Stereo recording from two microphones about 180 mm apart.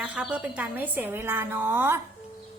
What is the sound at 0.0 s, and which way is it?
Speech, 5° right (ahead or behind).